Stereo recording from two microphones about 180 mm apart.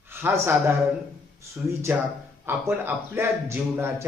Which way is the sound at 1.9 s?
10° right (ahead or behind).